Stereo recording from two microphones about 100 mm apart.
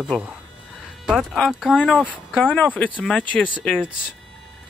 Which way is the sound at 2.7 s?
15° left (ahead or behind).